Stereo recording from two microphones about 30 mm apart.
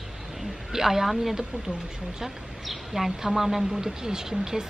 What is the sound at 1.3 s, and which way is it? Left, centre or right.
Speech, centre.